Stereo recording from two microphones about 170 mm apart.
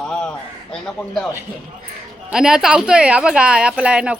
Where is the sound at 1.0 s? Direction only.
15° left (ahead or behind).